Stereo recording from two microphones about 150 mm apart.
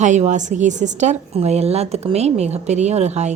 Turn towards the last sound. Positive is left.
turn(degrees=-50)  # may be behind; listen again after turning